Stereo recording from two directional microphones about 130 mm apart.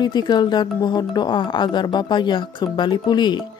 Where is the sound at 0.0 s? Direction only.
35° left (ahead or behind).